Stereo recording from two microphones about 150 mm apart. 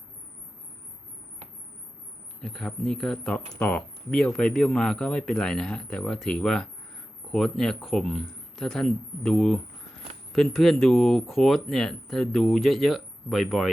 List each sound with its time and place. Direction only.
2.4 s speech: centre (ahead or behind)